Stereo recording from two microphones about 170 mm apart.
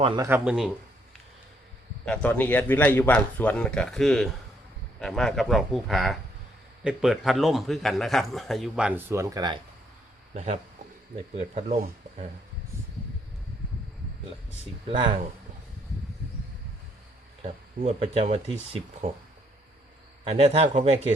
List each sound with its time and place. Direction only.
0.2 s speech: 15° right (ahead or behind)
2.0 s a man's voice: 10° left (ahead or behind); by 9.6 s 25° right (ahead or behind)
10.3 s speech: 40° right (ahead or behind)
14.8 s speech: 30° right (ahead or behind)
17.7 s speech: 40° right (ahead or behind)
20.3 s speech: 35° right (ahead or behind)